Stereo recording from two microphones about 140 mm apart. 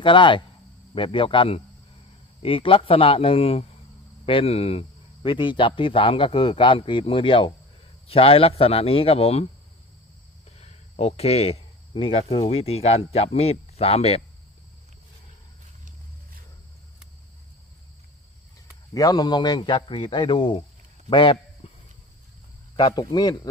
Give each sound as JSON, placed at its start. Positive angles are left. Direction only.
{"t": 0.0, "sound": "speech", "side_deg": 35}
{"t": 10.6, "sound": "speech", "side_deg": 50}
{"t": 18.9, "sound": "speech", "side_deg": 25}
{"t": 21.1, "sound": "a sound", "side_deg": 35}
{"t": 22.8, "sound": "a man's voice", "side_deg": 30}